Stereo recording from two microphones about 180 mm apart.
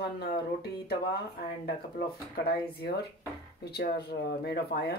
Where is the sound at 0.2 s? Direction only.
60° left (ahead or behind).